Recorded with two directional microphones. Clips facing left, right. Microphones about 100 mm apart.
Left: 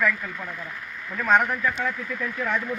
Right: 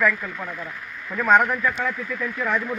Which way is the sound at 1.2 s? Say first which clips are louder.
Right 3 dB; 50° right (ahead or behind).